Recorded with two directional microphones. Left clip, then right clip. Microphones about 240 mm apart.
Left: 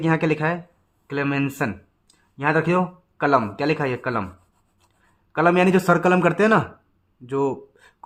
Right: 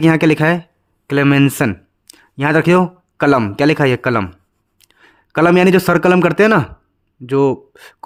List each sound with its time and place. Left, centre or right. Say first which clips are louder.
0.0 s a man's voice: right 9 dB; right